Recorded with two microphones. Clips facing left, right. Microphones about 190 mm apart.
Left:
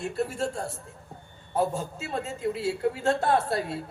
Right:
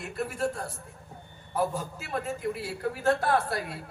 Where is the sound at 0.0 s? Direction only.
25° left (ahead or behind).